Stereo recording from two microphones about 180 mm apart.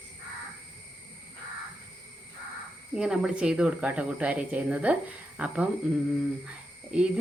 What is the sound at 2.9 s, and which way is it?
Speech, 5° right (ahead or behind).